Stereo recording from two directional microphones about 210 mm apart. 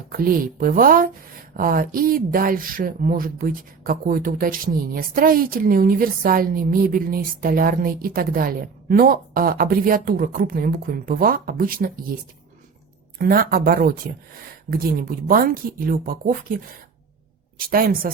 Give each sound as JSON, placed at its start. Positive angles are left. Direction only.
{"t": 0.1, "sound": "speech", "side_deg": -40}
{"t": 13.1, "sound": "speech", "side_deg": -45}
{"t": 17.7, "sound": "speech", "side_deg": -45}